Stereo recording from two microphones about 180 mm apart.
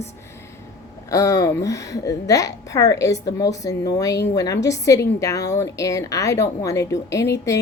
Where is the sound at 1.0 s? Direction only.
15° left (ahead or behind).